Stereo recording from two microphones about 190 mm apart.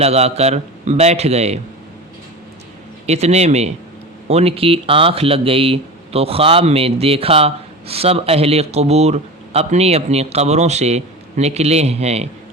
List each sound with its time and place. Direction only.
0.0 s speech: 35° right (ahead or behind)
3.1 s speech: 35° right (ahead or behind)